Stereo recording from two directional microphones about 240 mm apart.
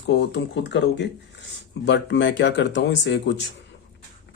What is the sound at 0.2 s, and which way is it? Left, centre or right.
Speech, left.